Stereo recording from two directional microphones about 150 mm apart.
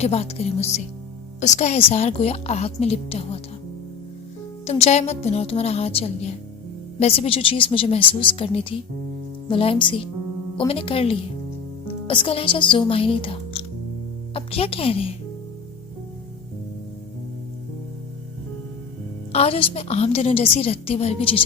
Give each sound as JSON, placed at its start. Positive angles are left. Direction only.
{"t": 0.0, "sound": "a woman's voice", "side_deg": 40}
{"t": 4.6, "sound": "a woman's voice", "side_deg": 45}
{"t": 19.3, "sound": "a woman's voice", "side_deg": 40}